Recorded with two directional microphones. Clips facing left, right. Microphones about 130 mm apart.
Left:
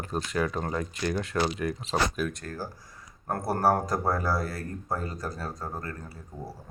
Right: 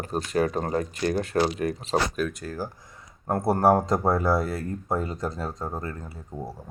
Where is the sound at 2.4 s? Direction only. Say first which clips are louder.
Right 4 dB; 15° right (ahead or behind).